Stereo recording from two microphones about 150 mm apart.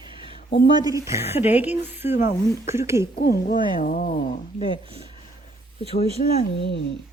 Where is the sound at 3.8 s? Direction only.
65° left (ahead or behind).